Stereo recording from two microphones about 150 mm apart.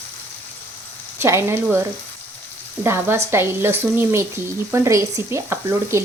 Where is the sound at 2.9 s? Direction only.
15° right (ahead or behind).